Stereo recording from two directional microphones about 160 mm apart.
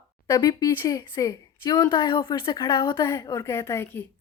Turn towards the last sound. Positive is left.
turn(degrees=15)  # may be behind; listen again after turning